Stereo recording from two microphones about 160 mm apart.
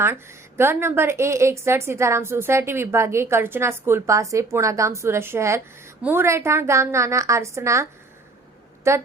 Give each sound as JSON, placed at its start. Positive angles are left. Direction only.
{"t": 0.0, "sound": "a woman's voice", "side_deg": -15}
{"t": 8.9, "sound": "a woman's voice", "side_deg": -15}